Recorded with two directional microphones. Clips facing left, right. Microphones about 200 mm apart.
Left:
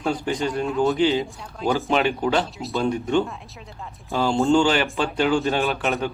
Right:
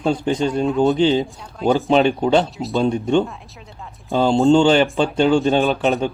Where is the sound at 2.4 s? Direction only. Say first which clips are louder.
Right 5 dB; centre (ahead or behind).